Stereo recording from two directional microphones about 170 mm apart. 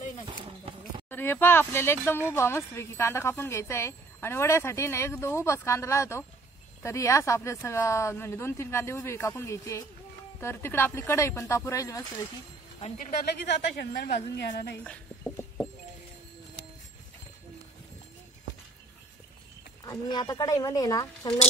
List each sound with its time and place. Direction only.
1.1 s speech: 10° left (ahead or behind)
13.5 s a woman's voice: 75° left (ahead or behind)
14.8 s a sound: 5° left (ahead or behind)
19.8 s speech: 25° left (ahead or behind)